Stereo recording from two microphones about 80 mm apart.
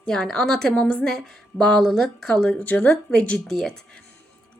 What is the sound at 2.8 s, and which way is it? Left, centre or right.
Speech, centre.